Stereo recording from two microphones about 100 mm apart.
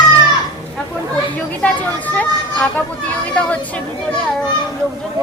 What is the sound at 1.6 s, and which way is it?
A woman's voice, 15° left (ahead or behind).